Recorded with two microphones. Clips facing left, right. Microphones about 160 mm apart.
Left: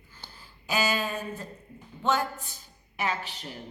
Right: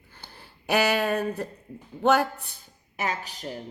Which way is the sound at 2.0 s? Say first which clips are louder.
Right 6 dB; 65° right (ahead or behind).